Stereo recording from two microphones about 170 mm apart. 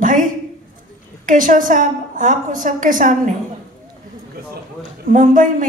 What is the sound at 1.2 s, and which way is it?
A woman's voice, 50° right (ahead or behind).